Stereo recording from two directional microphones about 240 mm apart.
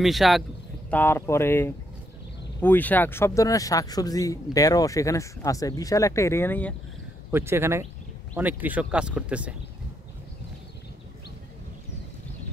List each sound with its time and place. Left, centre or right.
0.0 s speech: centre
7.2 s speech: centre